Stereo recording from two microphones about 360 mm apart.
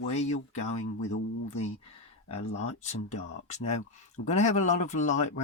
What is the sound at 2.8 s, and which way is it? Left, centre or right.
Speech, centre.